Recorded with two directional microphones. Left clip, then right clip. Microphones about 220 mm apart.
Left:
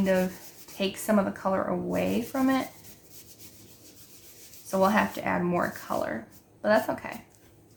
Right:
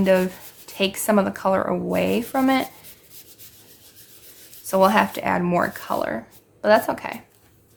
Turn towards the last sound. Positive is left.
turn(degrees=-40)  # may be behind; listen again after turning